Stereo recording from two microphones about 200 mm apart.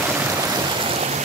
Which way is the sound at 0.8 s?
30° right (ahead or behind).